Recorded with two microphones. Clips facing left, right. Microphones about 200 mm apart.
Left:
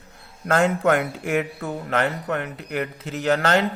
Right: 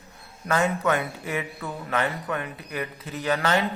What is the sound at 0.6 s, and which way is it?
Speech, 90° left.